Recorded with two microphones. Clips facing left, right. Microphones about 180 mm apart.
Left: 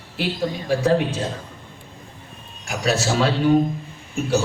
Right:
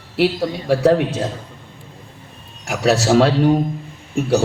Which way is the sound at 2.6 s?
75° right (ahead or behind).